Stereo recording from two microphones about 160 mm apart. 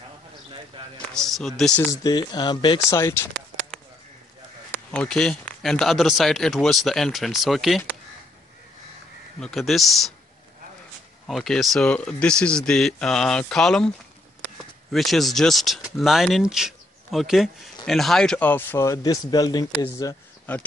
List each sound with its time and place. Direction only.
1.1 s speech: centre (ahead or behind)
1.9 s speech: 25° left (ahead or behind)
4.7 s speech: 5° left (ahead or behind)
9.4 s speech: centre (ahead or behind)
11.2 s speech: centre (ahead or behind); by 20.2 s 25° left (ahead or behind)